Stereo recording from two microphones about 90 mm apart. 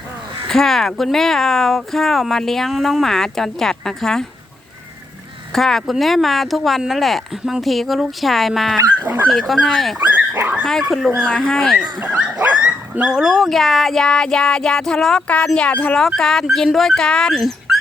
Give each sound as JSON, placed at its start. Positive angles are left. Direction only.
{"t": 0.4, "sound": "speech", "side_deg": 5}
{"t": 5.5, "sound": "speech", "side_deg": 5}
{"t": 9.0, "sound": "speech", "side_deg": -20}
{"t": 9.5, "sound": "speech", "side_deg": 5}
{"t": 10.0, "sound": "dog", "side_deg": -20}
{"t": 10.4, "sound": "speech", "side_deg": -10}
{"t": 11.3, "sound": "speech", "side_deg": 10}
{"t": 12.0, "sound": "speech", "side_deg": -10}